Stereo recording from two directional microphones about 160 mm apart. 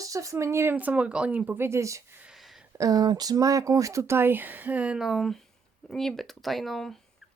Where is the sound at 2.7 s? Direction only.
20° right (ahead or behind); by 7.0 s centre (ahead or behind).